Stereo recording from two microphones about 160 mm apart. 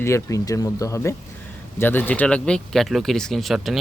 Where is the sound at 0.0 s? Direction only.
20° left (ahead or behind).